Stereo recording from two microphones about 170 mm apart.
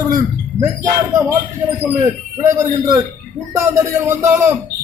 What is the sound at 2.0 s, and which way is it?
A man's voice, 15° right (ahead or behind).